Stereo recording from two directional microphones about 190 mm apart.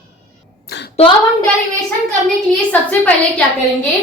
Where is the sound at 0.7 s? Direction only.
60° left (ahead or behind).